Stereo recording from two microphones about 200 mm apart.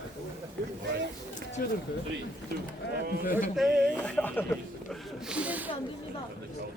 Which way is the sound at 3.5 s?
Centre (ahead or behind).